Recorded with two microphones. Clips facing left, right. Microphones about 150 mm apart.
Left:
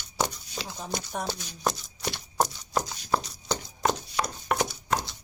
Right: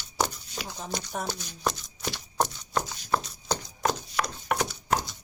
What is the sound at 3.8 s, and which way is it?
Horse, 20° left (ahead or behind).